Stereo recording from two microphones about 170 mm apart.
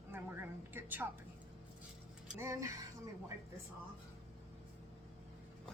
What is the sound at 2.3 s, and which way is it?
Speech, 15° right (ahead or behind).